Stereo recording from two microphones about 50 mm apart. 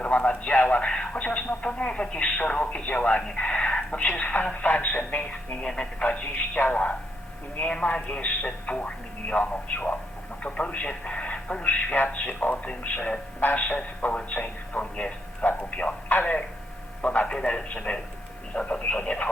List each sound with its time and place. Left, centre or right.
0.0 s a man's voice: left
0.9 s a man's voice: centre; by 5.5 s left
5.6 s a man's voice: left
12.6 s a man's voice: left
15.7 s a sound: left
17.0 s a man's voice: left
17.2 s a man's voice: centre